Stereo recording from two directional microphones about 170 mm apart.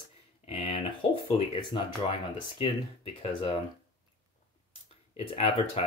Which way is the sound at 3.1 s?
35° left (ahead or behind).